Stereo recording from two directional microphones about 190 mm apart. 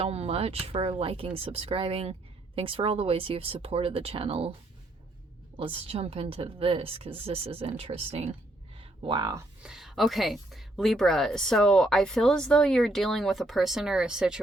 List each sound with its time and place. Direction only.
0.0 s a woman's voice: 30° right (ahead or behind)
5.5 s a woman's voice: 30° right (ahead or behind)
8.8 s a sound: 25° right (ahead or behind)
9.6 s a woman's voice: centre (ahead or behind)